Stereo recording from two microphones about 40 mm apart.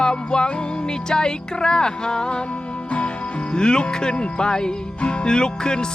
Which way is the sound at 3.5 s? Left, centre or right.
Left.